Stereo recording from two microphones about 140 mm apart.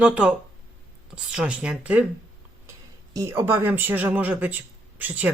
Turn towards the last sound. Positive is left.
turn(degrees=-10)  # may be behind; listen again after turning